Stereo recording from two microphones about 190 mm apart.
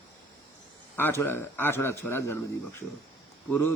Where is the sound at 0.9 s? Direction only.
10° left (ahead or behind).